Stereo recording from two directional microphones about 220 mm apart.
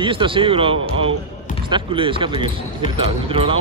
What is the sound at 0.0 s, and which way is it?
Speech, 20° right (ahead or behind).